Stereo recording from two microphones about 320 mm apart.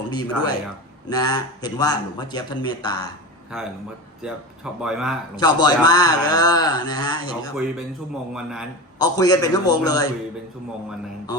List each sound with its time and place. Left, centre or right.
0.1 s a man's voice: centre
4.2 s speech: centre
5.4 s a man's voice: centre
9.0 s a man's voice: centre